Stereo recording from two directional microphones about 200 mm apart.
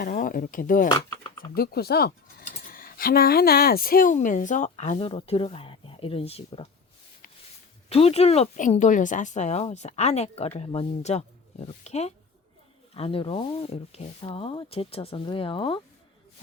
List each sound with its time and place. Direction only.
0.0 s speech: 45° left (ahead or behind)
0.9 s speech: 20° left (ahead or behind)
1.5 s speech: 50° left (ahead or behind); by 6.7 s 30° left (ahead or behind)
7.9 s speech: 30° left (ahead or behind)